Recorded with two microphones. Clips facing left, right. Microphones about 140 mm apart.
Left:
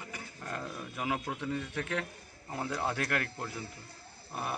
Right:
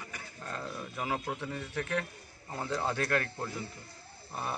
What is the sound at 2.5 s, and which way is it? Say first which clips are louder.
Speech: right 1 dB; 15° left (ahead or behind).